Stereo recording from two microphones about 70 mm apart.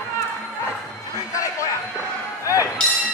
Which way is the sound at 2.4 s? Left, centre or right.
Left.